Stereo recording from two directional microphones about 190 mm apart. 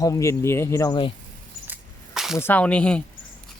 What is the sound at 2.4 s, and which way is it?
Speech, 10° left (ahead or behind).